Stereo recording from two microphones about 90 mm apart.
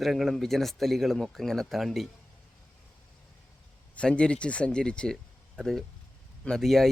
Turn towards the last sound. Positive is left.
turn(degrees=0)  # may be behind; listen again after turning